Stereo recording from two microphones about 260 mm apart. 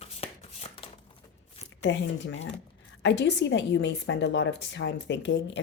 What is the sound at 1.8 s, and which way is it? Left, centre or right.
A woman's voice, left.